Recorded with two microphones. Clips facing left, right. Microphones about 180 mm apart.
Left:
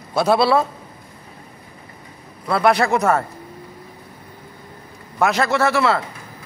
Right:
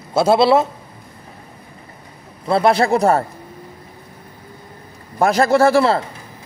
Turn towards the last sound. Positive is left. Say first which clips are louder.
# right 5 dB
turn(degrees=-35)  # may be behind; listen again after turning